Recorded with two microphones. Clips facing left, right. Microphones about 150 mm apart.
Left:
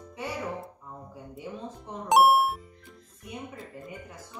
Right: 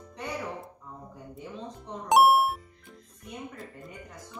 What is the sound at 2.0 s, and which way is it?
Speech, centre (ahead or behind).